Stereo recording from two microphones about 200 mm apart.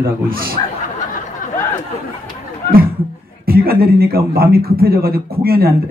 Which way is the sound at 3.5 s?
50° right (ahead or behind).